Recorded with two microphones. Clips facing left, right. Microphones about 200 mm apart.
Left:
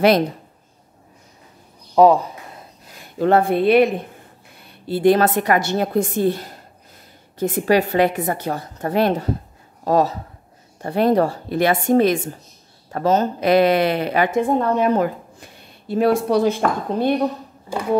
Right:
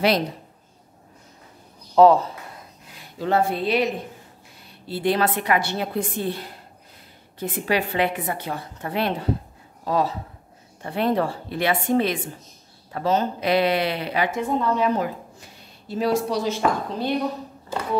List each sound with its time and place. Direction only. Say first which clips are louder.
2.0 s speech: left 1 dB; 15° left (ahead or behind)
3.2 s speech: left 6 dB; 55° left (ahead or behind)
17.7 s speech: left 3 dB; 15° left (ahead or behind)